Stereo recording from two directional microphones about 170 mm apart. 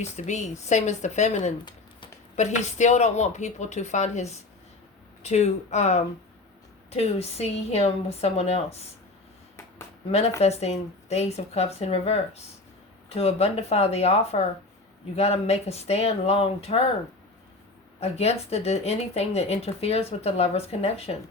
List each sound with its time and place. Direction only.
0.0 s speech: 45° left (ahead or behind)
10.1 s speech: 40° left (ahead or behind)
18.0 s speech: 40° left (ahead or behind)